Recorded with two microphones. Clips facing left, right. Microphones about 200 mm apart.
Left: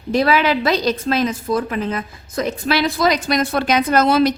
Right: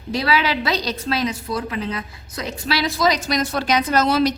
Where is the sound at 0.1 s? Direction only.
50° left (ahead or behind).